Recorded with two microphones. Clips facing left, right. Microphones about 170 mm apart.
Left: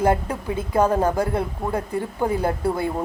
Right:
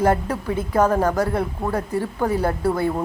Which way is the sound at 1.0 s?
25° left (ahead or behind).